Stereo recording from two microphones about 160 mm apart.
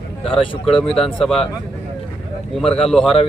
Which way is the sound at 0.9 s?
5° left (ahead or behind).